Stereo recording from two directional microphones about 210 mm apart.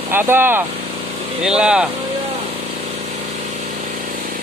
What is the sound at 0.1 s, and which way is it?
Speech, 10° right (ahead or behind).